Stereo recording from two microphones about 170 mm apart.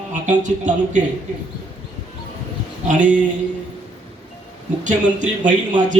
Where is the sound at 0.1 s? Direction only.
45° right (ahead or behind).